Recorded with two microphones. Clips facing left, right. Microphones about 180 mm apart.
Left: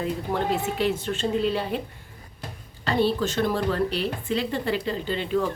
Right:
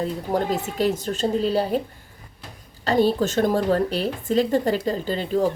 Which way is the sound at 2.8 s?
40° right (ahead or behind).